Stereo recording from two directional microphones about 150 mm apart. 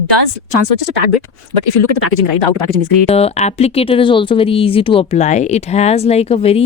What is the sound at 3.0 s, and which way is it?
Speech, 45° left (ahead or behind).